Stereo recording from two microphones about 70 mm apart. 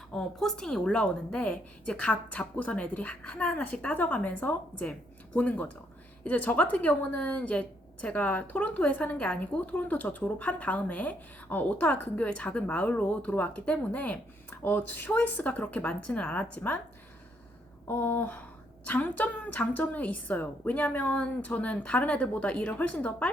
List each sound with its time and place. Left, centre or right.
0.1 s a woman's voice: centre; by 16.7 s left
17.8 s a woman's voice: left